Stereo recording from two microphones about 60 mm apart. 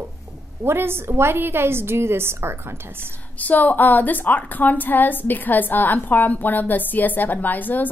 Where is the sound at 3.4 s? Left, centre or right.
Left.